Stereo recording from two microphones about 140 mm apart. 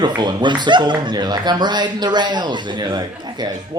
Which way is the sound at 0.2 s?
30° right (ahead or behind).